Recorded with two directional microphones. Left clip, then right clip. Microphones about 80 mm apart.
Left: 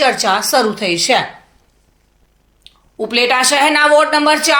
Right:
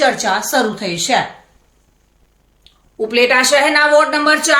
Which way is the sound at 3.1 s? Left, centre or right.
Left.